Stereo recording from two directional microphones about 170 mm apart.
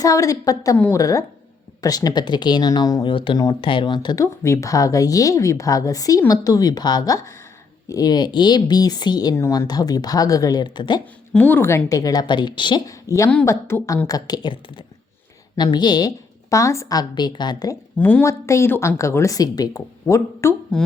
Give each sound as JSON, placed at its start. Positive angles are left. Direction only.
{"t": 0.0, "sound": "speech", "side_deg": 20}
{"t": 11.3, "sound": "speech", "side_deg": 10}
{"t": 18.0, "sound": "speech", "side_deg": 15}